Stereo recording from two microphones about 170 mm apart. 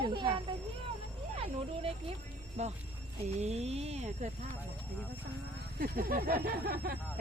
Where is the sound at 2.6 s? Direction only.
40° right (ahead or behind).